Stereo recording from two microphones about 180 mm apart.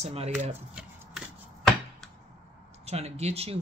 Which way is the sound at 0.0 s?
35° right (ahead or behind).